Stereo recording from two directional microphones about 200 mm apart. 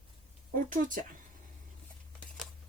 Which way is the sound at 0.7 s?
40° right (ahead or behind).